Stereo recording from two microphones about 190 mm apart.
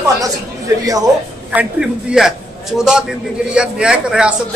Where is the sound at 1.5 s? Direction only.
5° right (ahead or behind).